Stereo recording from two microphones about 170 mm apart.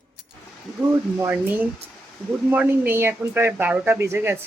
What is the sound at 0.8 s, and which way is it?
Speech, 10° right (ahead or behind).